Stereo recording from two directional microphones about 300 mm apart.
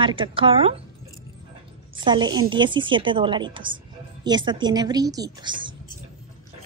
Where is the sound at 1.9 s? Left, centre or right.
Centre.